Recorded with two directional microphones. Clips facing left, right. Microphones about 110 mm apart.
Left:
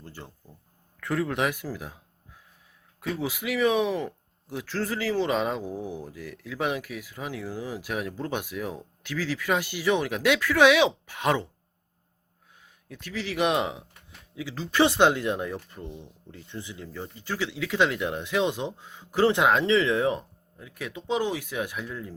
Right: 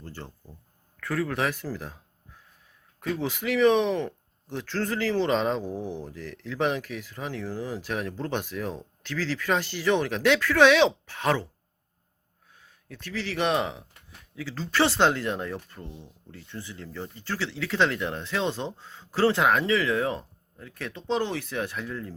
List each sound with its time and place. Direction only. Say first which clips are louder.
0.0 s a sound: right 2 dB; 15° left (ahead or behind)
0.9 s speech: left 1 dB; 20° left (ahead or behind)
12.9 s speech: even; 15° left (ahead or behind)